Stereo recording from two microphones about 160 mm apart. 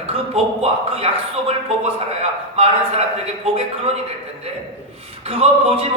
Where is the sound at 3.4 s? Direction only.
40° right (ahead or behind).